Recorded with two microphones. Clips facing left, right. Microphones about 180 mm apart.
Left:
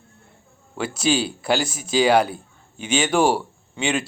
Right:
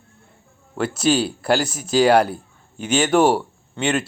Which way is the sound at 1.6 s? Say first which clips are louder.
Right 3 dB; 5° left (ahead or behind).